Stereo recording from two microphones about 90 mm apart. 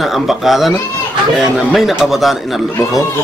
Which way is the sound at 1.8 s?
5° right (ahead or behind).